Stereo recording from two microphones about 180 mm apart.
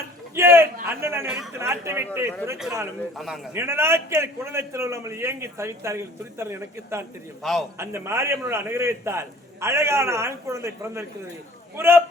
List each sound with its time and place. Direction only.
0.3 s a man's voice: 15° right (ahead or behind)
3.2 s a man's voice: centre (ahead or behind)
3.5 s a man's voice: 15° right (ahead or behind)